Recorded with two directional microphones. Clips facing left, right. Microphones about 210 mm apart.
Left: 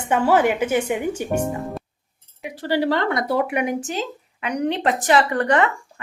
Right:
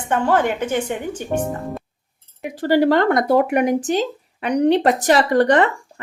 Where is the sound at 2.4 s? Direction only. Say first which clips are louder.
Right 5 dB; 45° right (ahead or behind).